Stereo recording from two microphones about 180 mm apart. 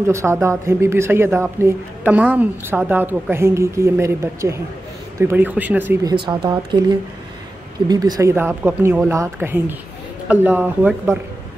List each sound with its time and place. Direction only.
0.0 s speech: 15° right (ahead or behind)
6.0 s speech: 25° right (ahead or behind)